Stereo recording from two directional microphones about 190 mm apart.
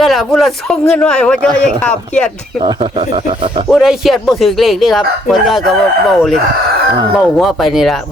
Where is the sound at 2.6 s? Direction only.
25° right (ahead or behind).